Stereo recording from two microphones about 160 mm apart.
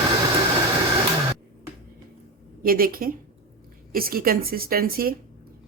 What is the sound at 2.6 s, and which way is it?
A woman's voice, 65° right (ahead or behind).